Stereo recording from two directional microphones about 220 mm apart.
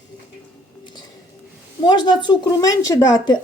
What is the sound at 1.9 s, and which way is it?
Speech, 20° left (ahead or behind).